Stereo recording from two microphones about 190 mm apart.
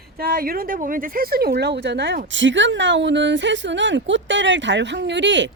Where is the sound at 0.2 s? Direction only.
50° right (ahead or behind).